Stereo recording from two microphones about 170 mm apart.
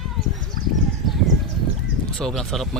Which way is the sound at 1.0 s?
Centre (ahead or behind).